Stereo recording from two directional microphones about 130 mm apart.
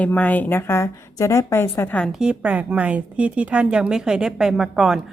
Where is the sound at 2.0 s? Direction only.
5° right (ahead or behind).